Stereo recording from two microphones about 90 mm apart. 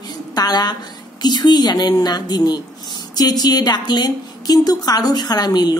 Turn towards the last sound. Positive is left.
turn(degrees=50)  # may be behind; listen again after turning